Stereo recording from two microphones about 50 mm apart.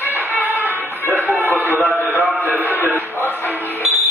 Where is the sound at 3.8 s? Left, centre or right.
Centre.